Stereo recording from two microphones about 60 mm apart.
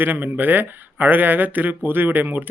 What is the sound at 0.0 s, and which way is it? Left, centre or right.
Speech, right.